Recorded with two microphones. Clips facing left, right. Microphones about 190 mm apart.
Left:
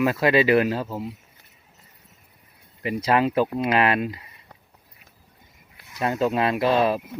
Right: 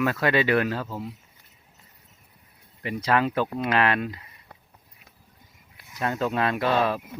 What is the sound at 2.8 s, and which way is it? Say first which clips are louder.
Speech: left 3 dB; 15° left (ahead or behind).